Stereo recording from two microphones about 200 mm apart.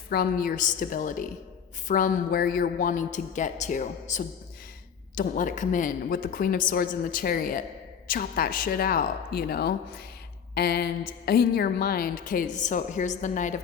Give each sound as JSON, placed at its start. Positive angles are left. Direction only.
{"t": 0.1, "sound": "a woman's voice", "side_deg": 45}